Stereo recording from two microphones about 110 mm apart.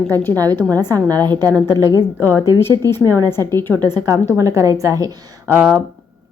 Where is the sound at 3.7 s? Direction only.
35° right (ahead or behind).